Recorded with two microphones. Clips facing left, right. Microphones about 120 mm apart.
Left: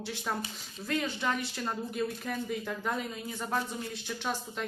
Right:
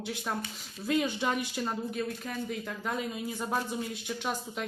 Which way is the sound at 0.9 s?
15° right (ahead or behind).